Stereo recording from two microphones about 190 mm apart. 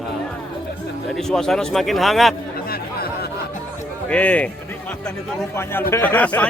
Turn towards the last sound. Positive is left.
turn(degrees=10)  # may be behind; listen again after turning